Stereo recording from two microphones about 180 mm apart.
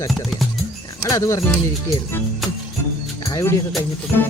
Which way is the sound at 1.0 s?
15° left (ahead or behind).